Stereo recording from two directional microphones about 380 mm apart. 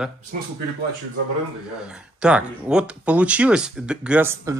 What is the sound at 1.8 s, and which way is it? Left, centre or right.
Speech, centre.